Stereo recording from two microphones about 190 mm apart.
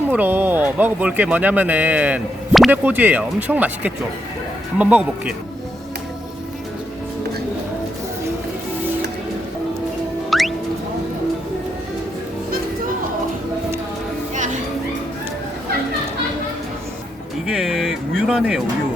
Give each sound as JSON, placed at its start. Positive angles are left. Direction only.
{"t": 0.1, "sound": "speech", "side_deg": -10}
{"t": 10.2, "sound": "music", "side_deg": 0}
{"t": 14.3, "sound": "music", "side_deg": -40}
{"t": 17.4, "sound": "a sound", "side_deg": -5}